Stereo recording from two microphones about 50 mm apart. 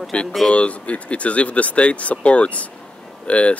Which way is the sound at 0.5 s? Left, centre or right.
Left.